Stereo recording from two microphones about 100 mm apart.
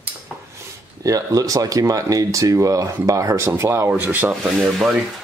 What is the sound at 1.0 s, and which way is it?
Speech, 35° right (ahead or behind).